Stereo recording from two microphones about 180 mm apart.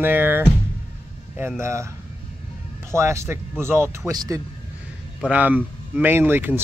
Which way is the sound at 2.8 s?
15° right (ahead or behind).